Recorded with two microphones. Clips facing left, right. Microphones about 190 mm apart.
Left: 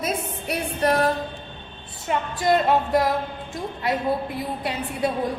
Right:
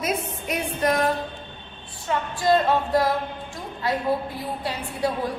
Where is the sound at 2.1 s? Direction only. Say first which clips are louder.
Even; 20° left (ahead or behind).